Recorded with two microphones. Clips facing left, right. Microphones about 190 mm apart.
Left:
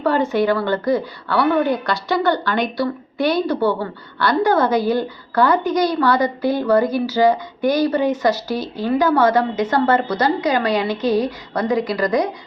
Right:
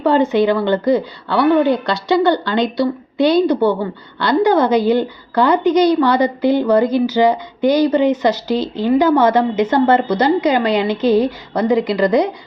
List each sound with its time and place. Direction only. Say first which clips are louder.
0.0 s speech: right 4 dB; 20° right (ahead or behind)